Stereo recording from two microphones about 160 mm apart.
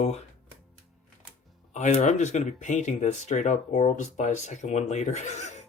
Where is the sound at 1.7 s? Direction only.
50° left (ahead or behind).